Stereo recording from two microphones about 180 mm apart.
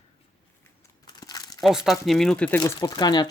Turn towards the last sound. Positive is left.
turn(degrees=20)  # may be behind; listen again after turning